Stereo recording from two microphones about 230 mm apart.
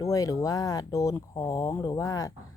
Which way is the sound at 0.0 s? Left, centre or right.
Centre.